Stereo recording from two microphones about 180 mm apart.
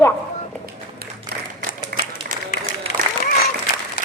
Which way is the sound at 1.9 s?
55° right (ahead or behind).